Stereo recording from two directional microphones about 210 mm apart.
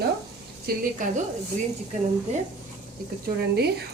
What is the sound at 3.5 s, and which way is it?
Speech, 50° right (ahead or behind).